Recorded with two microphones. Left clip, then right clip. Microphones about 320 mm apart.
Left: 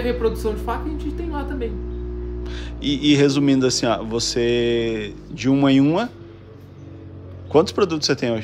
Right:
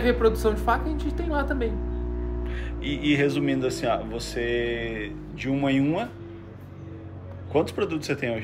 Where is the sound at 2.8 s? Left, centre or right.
Centre.